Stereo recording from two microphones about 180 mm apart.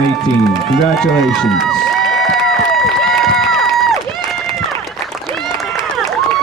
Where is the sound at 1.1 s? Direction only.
Centre (ahead or behind).